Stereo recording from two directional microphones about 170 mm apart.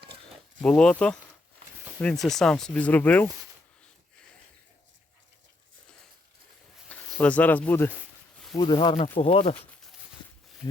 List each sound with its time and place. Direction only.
0.6 s speech: 5° left (ahead or behind)
2.2 s speech: 5° left (ahead or behind)
7.2 s speech: 10° left (ahead or behind)
8.5 s speech: 30° left (ahead or behind)